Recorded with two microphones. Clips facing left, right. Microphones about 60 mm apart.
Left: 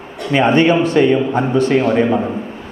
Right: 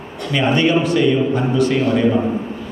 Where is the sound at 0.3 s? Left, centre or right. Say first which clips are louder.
Left 4 dB; left.